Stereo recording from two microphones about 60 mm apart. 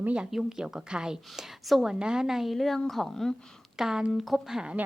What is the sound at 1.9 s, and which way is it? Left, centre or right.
A woman's voice, centre.